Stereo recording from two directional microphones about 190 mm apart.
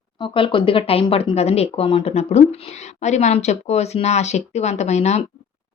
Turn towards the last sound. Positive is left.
turn(degrees=35)  # may be behind; listen again after turning